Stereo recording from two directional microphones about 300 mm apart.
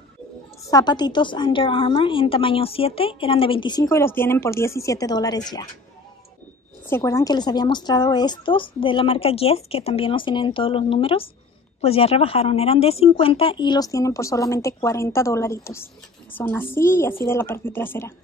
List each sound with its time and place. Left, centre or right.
0.7 s a woman's voice: centre
6.9 s a woman's voice: centre